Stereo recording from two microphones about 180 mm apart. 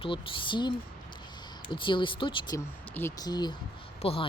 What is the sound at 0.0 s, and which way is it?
Speech, 30° left (ahead or behind).